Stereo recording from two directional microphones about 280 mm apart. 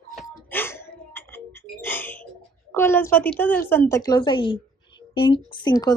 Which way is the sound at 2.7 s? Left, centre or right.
Centre.